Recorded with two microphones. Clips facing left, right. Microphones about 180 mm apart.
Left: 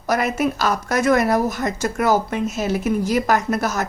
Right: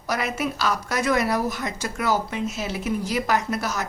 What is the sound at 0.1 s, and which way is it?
A woman's voice, 50° left (ahead or behind).